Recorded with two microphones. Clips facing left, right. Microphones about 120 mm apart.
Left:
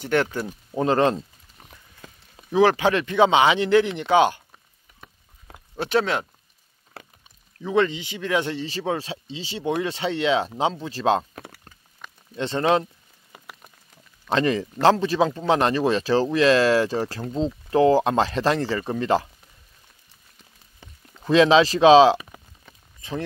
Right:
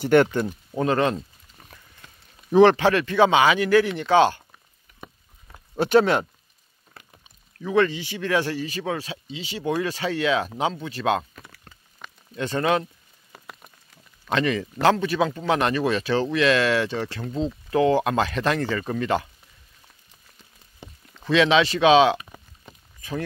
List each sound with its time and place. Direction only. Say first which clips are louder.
0.0 s speech: right 5 dB; centre (ahead or behind)
0.7 s speech: left 2 dB; 30° left (ahead or behind)
2.5 s speech: right 3 dB; 5° left (ahead or behind)
2.8 s speech: even; 20° left (ahead or behind)
5.8 s speech: right 5 dB; centre (ahead or behind)
7.0 s a sound: left 6 dB; 80° left
7.6 s speech: even; 20° left (ahead or behind)
12.4 s speech: left 2 dB; 25° left (ahead or behind)
14.3 s speech: left 2 dB; 35° left (ahead or behind)
21.3 s speech: left 3 dB; 35° left (ahead or behind)
22.9 s a sound: even; 25° left (ahead or behind)